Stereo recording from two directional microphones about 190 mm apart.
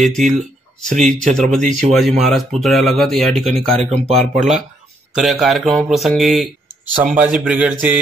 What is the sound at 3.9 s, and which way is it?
Speech, 35° right (ahead or behind).